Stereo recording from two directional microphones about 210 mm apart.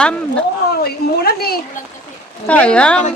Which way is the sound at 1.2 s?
45° left (ahead or behind).